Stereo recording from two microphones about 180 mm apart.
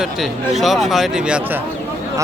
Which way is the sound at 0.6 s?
Centre (ahead or behind).